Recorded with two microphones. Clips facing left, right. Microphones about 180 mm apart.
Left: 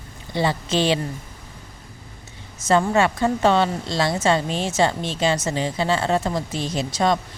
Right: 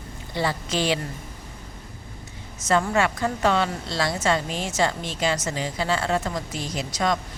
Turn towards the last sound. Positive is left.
turn(degrees=30)  # may be behind; listen again after turning